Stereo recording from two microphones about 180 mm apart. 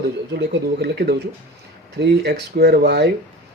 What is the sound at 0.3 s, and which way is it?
Speech, 65° right (ahead or behind).